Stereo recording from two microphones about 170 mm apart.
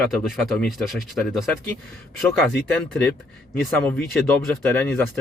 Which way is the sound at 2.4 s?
5° left (ahead or behind).